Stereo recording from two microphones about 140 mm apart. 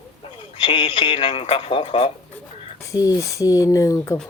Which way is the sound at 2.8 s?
25° left (ahead or behind).